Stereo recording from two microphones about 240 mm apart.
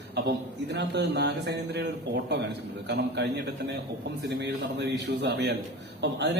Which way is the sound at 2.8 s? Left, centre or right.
Right.